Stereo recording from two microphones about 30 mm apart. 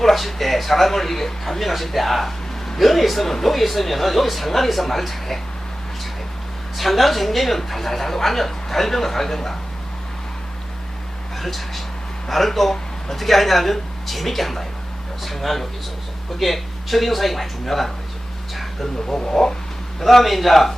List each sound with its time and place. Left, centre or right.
0.0 s a man's voice: centre
6.7 s speech: centre
11.3 s a man's voice: centre
18.5 s a sound: centre
19.0 s speech: left
20.0 s a man's voice: centre